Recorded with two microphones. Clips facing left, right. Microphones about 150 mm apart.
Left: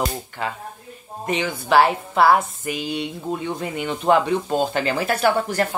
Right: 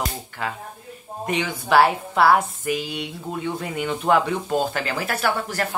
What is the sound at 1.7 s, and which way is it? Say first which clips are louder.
Speech: left 1 dB; 15° left (ahead or behind).